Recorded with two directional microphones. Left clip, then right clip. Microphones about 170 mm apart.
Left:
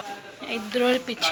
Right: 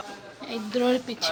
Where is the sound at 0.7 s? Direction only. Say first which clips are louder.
Left 2 dB; 15° right (ahead or behind).